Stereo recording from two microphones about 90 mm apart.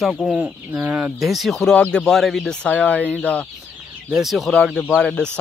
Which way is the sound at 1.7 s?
10° left (ahead or behind).